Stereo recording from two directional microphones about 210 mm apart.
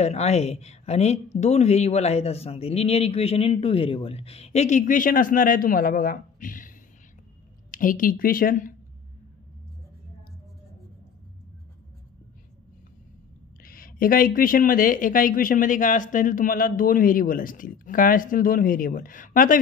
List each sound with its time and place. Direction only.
0.0 s speech: 30° left (ahead or behind)
7.7 s speech: 40° left (ahead or behind)
13.7 s speech: 45° left (ahead or behind)